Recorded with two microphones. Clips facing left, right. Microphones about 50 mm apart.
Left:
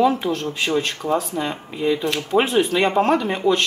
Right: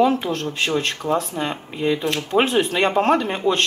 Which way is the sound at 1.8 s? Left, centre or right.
Right.